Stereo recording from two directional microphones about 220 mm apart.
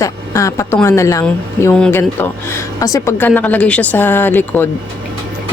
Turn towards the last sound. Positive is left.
turn(degrees=10)  # may be behind; listen again after turning